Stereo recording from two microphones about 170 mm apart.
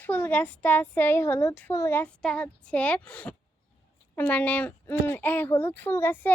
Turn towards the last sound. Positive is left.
turn(degrees=10)  # may be behind; listen again after turning